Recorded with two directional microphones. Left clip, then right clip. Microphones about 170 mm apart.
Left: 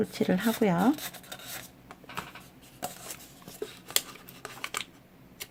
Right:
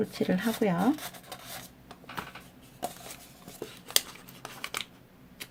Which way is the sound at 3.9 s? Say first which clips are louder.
Right 4 dB; 10° left (ahead or behind).